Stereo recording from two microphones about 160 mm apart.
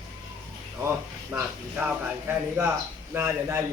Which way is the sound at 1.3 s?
10° right (ahead or behind).